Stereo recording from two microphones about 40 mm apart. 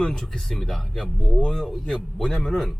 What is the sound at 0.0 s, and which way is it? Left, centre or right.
Speech, centre.